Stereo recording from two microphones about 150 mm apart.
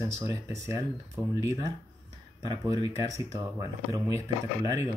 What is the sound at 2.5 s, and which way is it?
Speech, 25° right (ahead or behind).